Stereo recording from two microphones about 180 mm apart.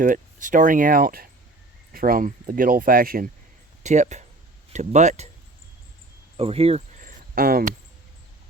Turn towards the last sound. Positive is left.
turn(degrees=-55)  # may be behind; listen again after turning